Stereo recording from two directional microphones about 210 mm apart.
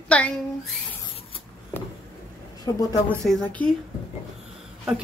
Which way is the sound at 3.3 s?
Centre (ahead or behind).